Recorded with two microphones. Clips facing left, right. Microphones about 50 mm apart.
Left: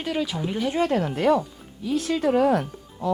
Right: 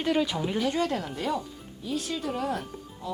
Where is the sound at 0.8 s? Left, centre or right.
Left.